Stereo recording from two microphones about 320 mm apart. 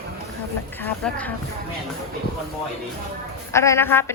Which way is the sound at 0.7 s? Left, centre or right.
Centre.